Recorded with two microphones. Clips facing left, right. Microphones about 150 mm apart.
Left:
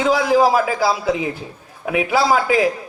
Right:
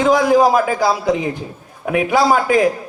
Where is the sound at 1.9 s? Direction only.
45° right (ahead or behind).